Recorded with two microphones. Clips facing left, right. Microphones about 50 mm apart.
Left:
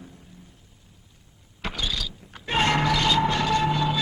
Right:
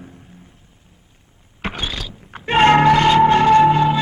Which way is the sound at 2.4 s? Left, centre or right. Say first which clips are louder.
Right 11 dB; right.